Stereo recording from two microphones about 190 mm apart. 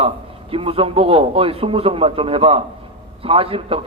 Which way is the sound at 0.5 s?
30° right (ahead or behind).